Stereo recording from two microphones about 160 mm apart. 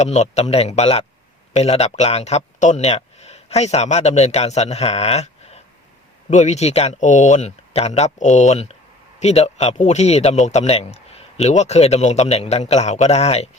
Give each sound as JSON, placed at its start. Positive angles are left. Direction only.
{"t": 0.0, "sound": "speech", "side_deg": 45}